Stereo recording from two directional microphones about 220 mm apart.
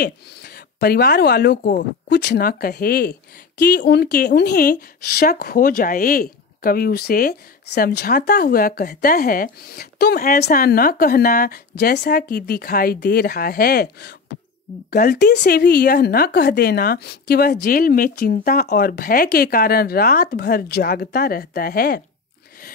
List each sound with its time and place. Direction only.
0.0 s speech: 45° left (ahead or behind)